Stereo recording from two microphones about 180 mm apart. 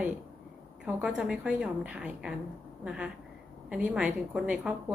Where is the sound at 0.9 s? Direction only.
5° right (ahead or behind).